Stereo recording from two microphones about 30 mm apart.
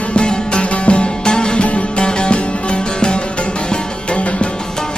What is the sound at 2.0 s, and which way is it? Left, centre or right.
Music, left.